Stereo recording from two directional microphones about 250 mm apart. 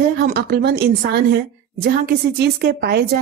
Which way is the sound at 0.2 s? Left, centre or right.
Right.